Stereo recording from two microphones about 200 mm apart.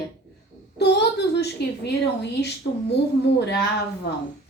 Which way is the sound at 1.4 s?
55° left (ahead or behind).